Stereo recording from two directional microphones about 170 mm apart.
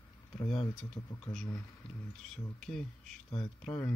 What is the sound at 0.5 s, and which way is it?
Speech, 35° left (ahead or behind).